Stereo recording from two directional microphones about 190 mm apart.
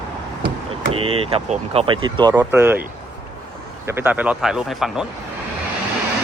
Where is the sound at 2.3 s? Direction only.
10° right (ahead or behind).